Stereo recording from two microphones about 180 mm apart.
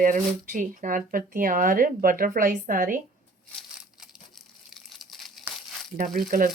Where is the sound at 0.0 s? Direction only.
50° right (ahead or behind).